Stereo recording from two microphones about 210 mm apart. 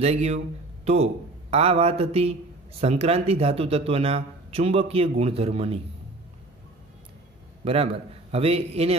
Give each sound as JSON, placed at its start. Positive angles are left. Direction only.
{"t": 0.0, "sound": "a man's voice", "side_deg": -30}
{"t": 7.6, "sound": "a man's voice", "side_deg": -25}